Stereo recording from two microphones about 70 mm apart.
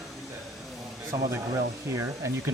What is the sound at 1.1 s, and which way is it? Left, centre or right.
Speech, right.